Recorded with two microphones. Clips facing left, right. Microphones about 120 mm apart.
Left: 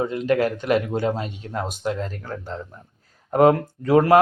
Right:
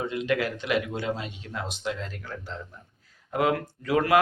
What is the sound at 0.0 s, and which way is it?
Speech, 40° left (ahead or behind).